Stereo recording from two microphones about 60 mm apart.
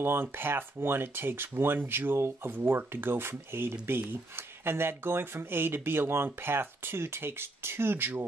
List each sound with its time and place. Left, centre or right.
0.0 s speech: right